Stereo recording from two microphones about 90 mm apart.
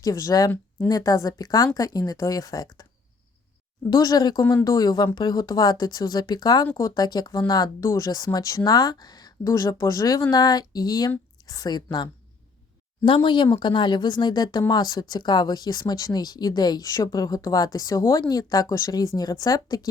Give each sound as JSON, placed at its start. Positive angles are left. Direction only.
{"t": 0.0, "sound": "speech", "side_deg": 40}
{"t": 3.8, "sound": "speech", "side_deg": 45}
{"t": 9.4, "sound": "speech", "side_deg": 35}
{"t": 13.1, "sound": "a woman's voice", "side_deg": 70}